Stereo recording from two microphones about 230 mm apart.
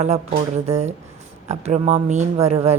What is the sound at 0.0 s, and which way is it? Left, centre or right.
A woman's voice, right.